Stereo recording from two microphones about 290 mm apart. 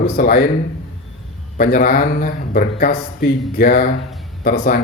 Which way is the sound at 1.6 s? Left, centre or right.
Left.